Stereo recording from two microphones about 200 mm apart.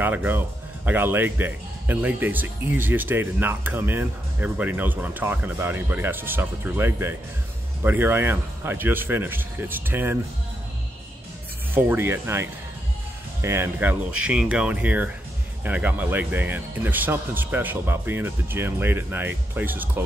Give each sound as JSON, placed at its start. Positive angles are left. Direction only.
{"t": 0.0, "sound": "speech", "side_deg": -10}
{"t": 11.7, "sound": "speech", "side_deg": -10}